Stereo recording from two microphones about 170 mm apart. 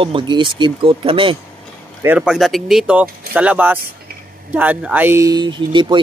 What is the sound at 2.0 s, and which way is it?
Speech, 5° right (ahead or behind).